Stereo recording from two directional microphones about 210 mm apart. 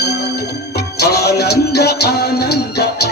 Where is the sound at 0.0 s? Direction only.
50° left (ahead or behind).